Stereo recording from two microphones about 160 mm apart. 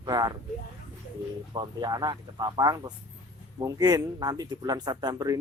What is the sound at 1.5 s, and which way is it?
Speech, 25° right (ahead or behind).